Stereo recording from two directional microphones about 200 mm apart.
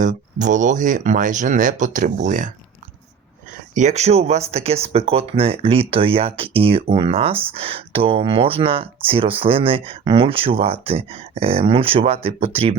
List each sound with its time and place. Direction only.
0.0 s speech: 40° right (ahead or behind)
3.8 s speech: 35° right (ahead or behind)